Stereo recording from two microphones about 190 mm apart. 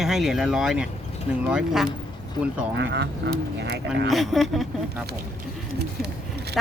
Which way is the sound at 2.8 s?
60° right (ahead or behind).